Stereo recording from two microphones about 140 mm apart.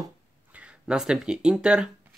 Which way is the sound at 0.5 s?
5° right (ahead or behind).